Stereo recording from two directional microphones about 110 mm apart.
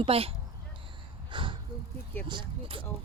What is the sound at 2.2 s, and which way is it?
Speech, 50° right (ahead or behind).